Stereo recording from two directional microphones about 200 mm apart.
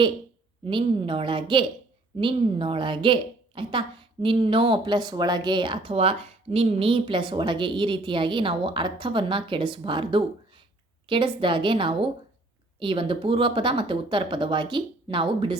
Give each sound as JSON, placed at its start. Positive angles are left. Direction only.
{"t": 0.6, "sound": "a woman's voice", "side_deg": -25}